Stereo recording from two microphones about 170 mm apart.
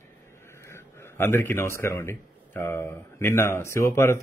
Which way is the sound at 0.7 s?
15° left (ahead or behind).